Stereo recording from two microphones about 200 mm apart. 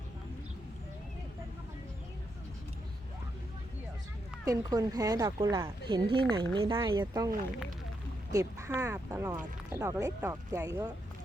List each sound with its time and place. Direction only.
4.4 s speech: 15° right (ahead or behind)
8.3 s speech: 15° right (ahead or behind)